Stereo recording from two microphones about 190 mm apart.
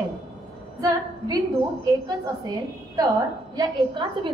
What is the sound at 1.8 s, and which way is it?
Speech, 20° right (ahead or behind).